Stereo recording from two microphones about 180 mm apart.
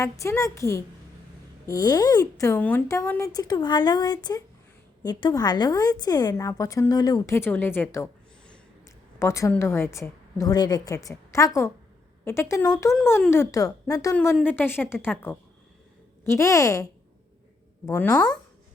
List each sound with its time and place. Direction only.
0.0 s a woman's voice: 15° left (ahead or behind)
3.3 s a woman's voice: 20° left (ahead or behind)
14.2 s a woman's voice: 10° left (ahead or behind)
17.8 s a woman's voice: 10° left (ahead or behind)